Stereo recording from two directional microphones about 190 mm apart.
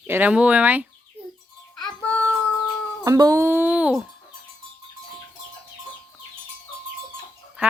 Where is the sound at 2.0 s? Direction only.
5° left (ahead or behind).